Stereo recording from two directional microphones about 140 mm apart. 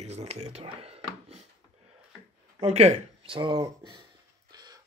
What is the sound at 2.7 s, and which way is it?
Speech, 50° right (ahead or behind).